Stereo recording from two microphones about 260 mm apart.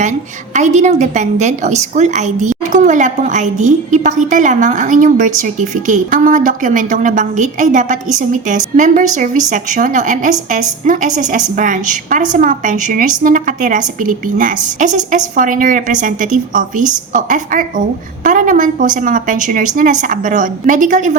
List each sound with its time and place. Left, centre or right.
0.0 s a woman's voice: right